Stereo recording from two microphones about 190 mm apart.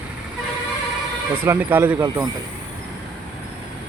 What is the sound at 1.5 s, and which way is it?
Speech, 10° right (ahead or behind).